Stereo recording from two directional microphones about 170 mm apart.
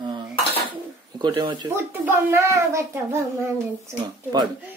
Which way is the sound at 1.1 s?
25° right (ahead or behind).